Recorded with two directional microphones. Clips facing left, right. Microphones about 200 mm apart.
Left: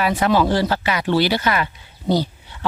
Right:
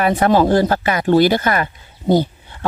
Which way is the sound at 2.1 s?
50° right (ahead or behind).